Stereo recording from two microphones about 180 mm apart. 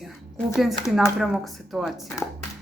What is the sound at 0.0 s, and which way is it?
Speech, centre (ahead or behind).